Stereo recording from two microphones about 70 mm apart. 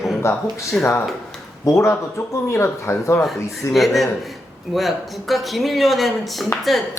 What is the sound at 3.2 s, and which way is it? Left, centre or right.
Speech, centre.